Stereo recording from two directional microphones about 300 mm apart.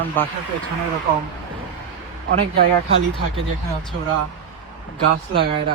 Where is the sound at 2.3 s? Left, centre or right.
Right.